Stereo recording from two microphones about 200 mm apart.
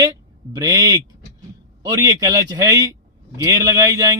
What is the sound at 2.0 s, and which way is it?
A man's voice, 20° right (ahead or behind).